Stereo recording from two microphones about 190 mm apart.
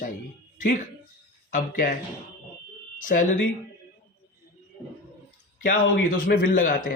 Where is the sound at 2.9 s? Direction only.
45° left (ahead or behind).